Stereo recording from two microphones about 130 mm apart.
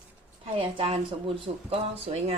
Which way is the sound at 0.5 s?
45° right (ahead or behind).